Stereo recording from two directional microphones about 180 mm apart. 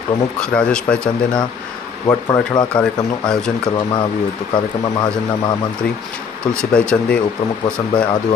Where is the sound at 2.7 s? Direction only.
5° left (ahead or behind).